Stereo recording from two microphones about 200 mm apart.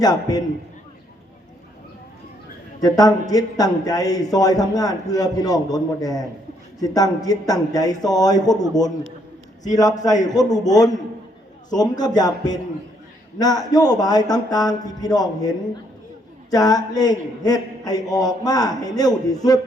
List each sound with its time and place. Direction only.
0.0 s a man's voice: 20° left (ahead or behind)
2.8 s a man's voice: 20° left (ahead or behind)